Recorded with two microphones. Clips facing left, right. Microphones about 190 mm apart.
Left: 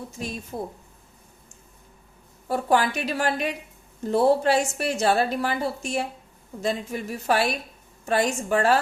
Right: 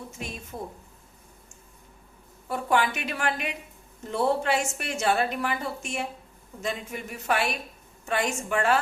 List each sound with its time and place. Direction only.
0.5 s a woman's voice: 35° left (ahead or behind)
2.5 s a woman's voice: 35° left (ahead or behind)